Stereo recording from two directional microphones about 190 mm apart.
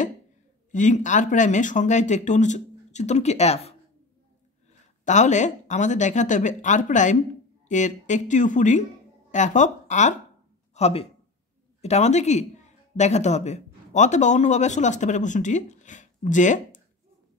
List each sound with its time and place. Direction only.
0.7 s speech: 40° left (ahead or behind)
5.0 s speech: 40° left (ahead or behind)